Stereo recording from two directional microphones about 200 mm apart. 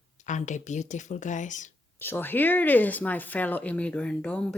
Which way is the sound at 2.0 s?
10° left (ahead or behind).